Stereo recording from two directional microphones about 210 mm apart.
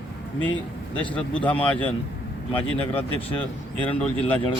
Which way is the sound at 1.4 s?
5° left (ahead or behind).